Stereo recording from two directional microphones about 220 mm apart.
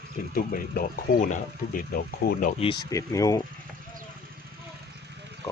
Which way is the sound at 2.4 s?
25° left (ahead or behind).